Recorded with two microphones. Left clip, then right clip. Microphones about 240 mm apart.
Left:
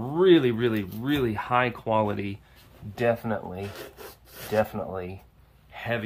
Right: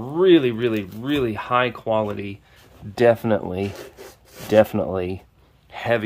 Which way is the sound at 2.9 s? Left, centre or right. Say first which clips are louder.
Right 9 dB; right.